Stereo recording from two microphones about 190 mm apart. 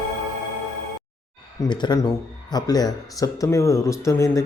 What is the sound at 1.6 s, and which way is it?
Speech, 25° left (ahead or behind).